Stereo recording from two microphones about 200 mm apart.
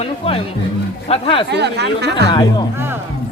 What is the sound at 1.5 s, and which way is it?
Speech, 55° right (ahead or behind).